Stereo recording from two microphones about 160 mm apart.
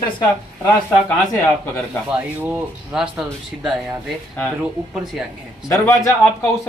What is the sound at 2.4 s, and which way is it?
Speech, 10° right (ahead or behind).